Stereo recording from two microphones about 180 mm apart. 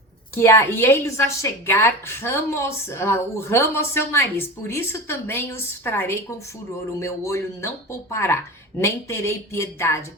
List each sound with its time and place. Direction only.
0.3 s a woman's voice: 15° left (ahead or behind)